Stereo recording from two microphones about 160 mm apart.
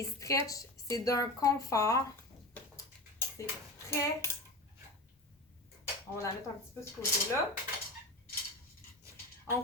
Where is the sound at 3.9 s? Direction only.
15° left (ahead or behind).